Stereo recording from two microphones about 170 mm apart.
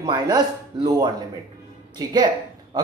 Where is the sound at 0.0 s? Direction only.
25° right (ahead or behind).